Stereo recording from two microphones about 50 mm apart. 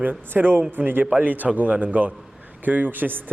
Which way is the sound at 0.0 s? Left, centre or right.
Right.